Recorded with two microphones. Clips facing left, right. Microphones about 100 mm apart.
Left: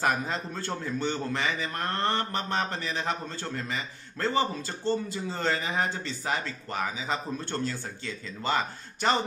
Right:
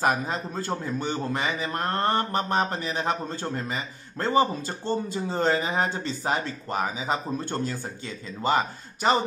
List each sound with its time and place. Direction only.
0.0 s a man's voice: 10° right (ahead or behind)